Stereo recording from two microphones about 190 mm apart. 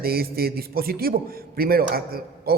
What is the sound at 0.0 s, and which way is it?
A man's voice, 55° right (ahead or behind).